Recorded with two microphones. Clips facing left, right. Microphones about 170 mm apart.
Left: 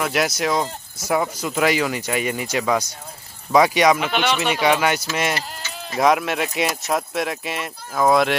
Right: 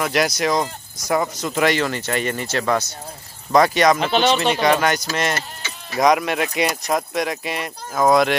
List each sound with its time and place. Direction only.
0.0 s speech: 5° left (ahead or behind)
4.1 s speech: 30° right (ahead or behind)
4.4 s speech: 5° left (ahead or behind)